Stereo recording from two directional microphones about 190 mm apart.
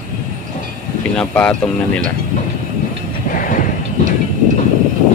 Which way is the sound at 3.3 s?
45° left (ahead or behind).